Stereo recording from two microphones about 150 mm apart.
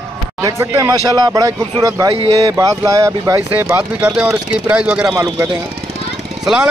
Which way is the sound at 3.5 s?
10° right (ahead or behind).